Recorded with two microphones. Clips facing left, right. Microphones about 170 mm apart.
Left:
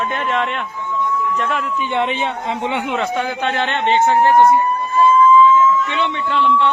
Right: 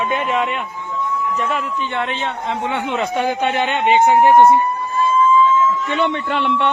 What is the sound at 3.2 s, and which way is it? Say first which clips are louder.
Speech: right 2 dB; 15° right (ahead or behind).